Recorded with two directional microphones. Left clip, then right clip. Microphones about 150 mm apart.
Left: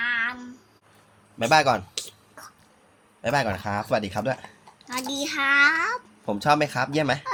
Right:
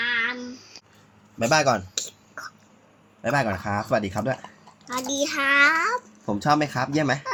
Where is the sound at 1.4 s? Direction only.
30° left (ahead or behind).